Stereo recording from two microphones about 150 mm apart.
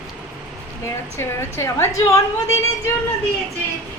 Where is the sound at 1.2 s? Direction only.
15° left (ahead or behind).